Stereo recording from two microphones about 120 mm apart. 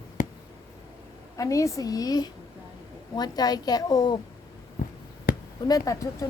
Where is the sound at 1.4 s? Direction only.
25° left (ahead or behind).